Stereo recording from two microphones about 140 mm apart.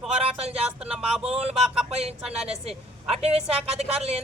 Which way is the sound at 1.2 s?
45° right (ahead or behind).